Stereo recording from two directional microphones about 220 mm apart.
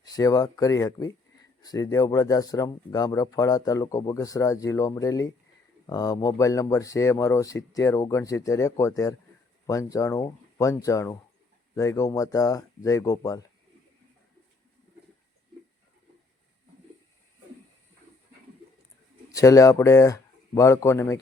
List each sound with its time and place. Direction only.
0.0 s speech: 15° left (ahead or behind)
19.3 s speech: 15° left (ahead or behind)